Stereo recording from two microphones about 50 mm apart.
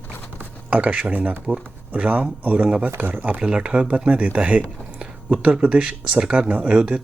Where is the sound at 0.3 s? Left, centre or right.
Right.